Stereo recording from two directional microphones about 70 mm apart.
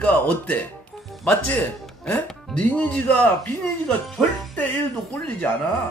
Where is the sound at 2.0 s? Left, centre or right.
Left.